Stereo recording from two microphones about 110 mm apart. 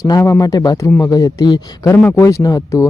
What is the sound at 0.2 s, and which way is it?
Speech, 30° left (ahead or behind).